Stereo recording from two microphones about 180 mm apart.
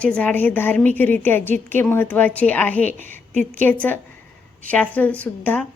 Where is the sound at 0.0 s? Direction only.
5° left (ahead or behind).